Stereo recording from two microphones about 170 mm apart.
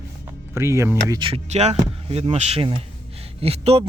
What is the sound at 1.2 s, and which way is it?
Speech, 35° right (ahead or behind).